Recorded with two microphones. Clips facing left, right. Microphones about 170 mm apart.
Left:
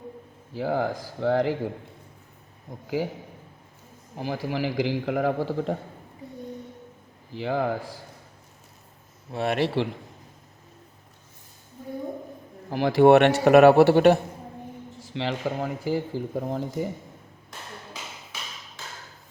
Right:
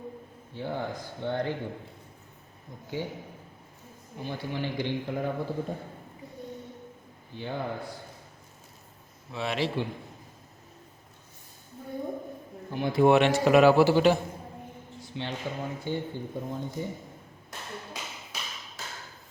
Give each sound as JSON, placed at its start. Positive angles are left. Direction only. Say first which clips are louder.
{"t": 0.5, "sound": "speech", "louder": "left 7 dB", "side_deg": 90}
{"t": 3.0, "sound": "speech", "louder": "left 5 dB", "side_deg": 90}
{"t": 4.2, "sound": "speech", "louder": "left 5 dB", "side_deg": 90}
{"t": 7.3, "sound": "speech", "louder": "left 7 dB", "side_deg": 90}
{"t": 9.3, "sound": "a man's voice", "louder": "left 5 dB", "side_deg": 55}
{"t": 12.7, "sound": "a man's voice", "louder": "left 5 dB", "side_deg": 90}
{"t": 15.0, "sound": "speech", "louder": "left 6 dB", "side_deg": 90}